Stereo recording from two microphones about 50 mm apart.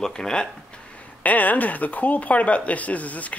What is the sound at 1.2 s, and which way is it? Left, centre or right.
Speech, left.